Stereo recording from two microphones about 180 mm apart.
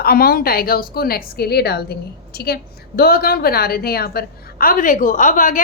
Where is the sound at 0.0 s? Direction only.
55° left (ahead or behind).